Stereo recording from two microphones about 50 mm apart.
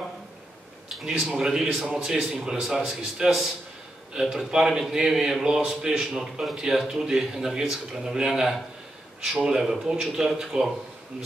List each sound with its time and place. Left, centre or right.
0.9 s a man's voice: centre